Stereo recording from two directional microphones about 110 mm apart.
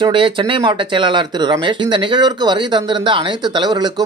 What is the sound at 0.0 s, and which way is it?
Speech, 50° right (ahead or behind).